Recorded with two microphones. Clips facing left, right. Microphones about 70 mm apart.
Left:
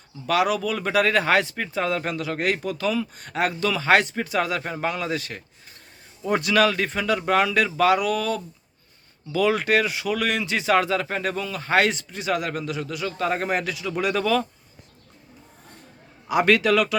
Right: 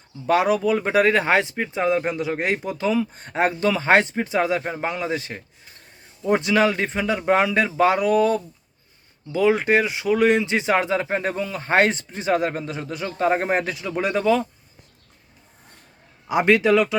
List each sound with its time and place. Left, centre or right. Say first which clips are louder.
0.3 s speech: right 3 dB; right
16.3 s speech: right 2 dB; right